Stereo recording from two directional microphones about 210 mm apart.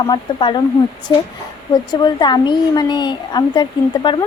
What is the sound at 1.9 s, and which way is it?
Speech, 20° left (ahead or behind).